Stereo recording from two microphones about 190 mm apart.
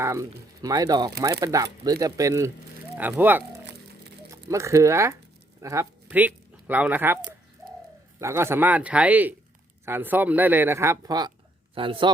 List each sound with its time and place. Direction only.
0.0 s speech: 15° right (ahead or behind)